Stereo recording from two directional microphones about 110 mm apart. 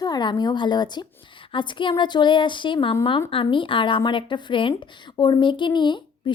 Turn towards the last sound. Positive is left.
turn(degrees=45)  # may be behind; listen again after turning